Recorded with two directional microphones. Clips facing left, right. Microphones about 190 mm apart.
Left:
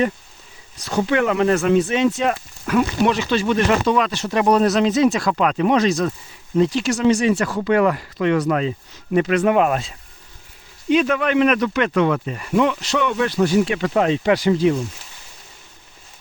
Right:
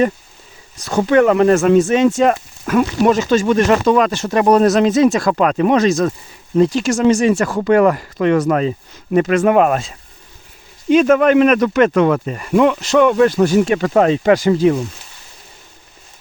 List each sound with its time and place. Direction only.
0.8 s speech: 45° right (ahead or behind)